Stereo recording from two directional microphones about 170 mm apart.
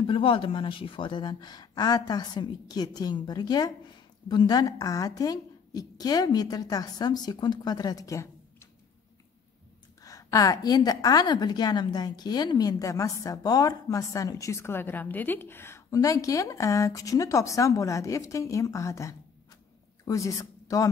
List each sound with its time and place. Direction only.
0.0 s a woman's voice: 30° left (ahead or behind)
10.0 s a woman's voice: 20° left (ahead or behind)